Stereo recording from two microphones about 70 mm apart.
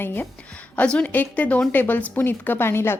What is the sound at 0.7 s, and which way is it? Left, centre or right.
Speech, centre.